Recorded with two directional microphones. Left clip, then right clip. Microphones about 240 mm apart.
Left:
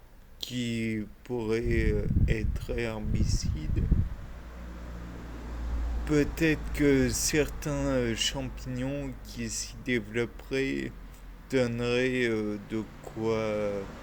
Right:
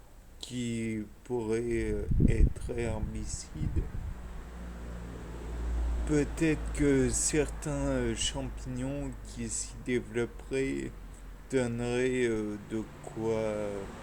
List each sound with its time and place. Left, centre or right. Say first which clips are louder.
0.4 s speech: left 3 dB; left
6.1 s speech: left 3 dB; left